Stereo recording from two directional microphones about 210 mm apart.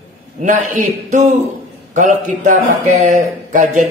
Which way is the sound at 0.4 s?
35° right (ahead or behind).